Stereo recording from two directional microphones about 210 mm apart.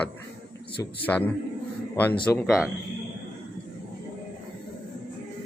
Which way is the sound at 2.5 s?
5° right (ahead or behind).